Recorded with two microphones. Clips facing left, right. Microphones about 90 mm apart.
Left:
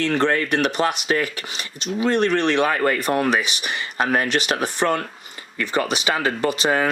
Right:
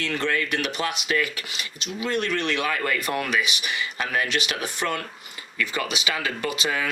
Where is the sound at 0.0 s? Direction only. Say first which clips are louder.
Left 6 dB; 35° left (ahead or behind).